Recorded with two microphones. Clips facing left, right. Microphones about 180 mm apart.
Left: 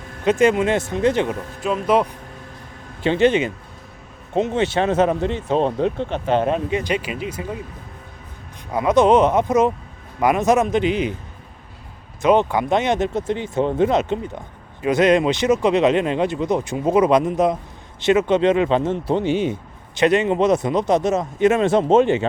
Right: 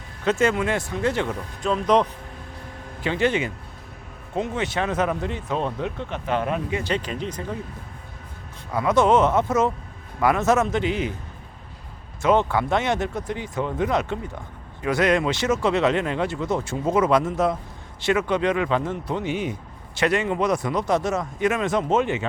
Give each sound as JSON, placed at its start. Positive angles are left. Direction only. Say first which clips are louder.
{"t": 0.3, "sound": "speech", "louder": "left 5 dB", "side_deg": 15}
{"t": 1.6, "sound": "speech", "louder": "left 1 dB", "side_deg": 5}
{"t": 3.0, "sound": "speech", "louder": "left 6 dB", "side_deg": 25}
{"t": 8.7, "sound": "speech", "louder": "left 4 dB", "side_deg": 20}
{"t": 12.2, "sound": "speech", "louder": "left 3 dB", "side_deg": 15}